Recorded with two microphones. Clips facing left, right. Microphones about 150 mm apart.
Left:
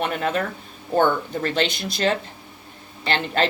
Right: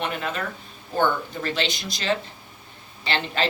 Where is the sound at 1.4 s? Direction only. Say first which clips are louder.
Left 4 dB; 50° left (ahead or behind).